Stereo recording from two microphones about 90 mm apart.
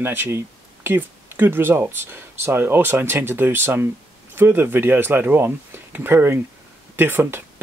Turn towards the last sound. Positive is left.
turn(degrees=-25)  # may be behind; listen again after turning